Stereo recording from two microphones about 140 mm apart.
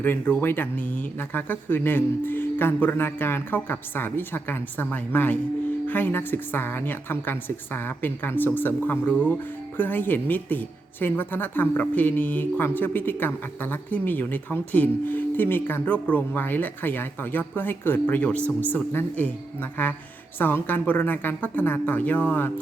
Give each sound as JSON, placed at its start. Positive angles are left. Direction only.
{"t": 0.0, "sound": "speech", "side_deg": 15}